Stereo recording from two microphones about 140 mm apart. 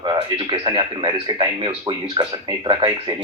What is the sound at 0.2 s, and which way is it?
A man's voice, 40° right (ahead or behind).